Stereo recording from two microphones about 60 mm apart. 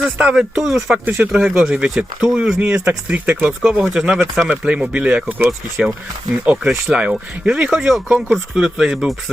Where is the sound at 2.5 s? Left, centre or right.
Centre.